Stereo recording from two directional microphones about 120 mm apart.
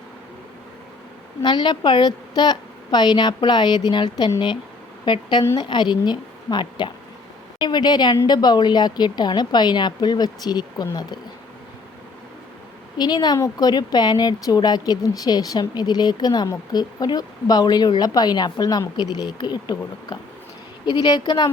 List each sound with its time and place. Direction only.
1.4 s speech: 40° left (ahead or behind)
13.0 s speech: 35° left (ahead or behind)